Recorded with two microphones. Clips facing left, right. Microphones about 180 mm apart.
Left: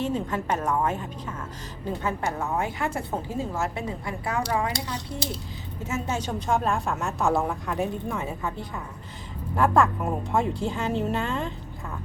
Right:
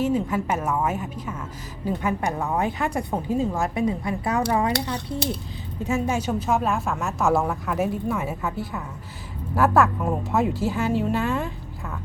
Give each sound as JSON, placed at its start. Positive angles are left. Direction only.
{"t": 0.0, "sound": "a woman's voice", "side_deg": -10}
{"t": 4.7, "sound": "speech", "side_deg": -60}
{"t": 5.8, "sound": "a woman's voice", "side_deg": -15}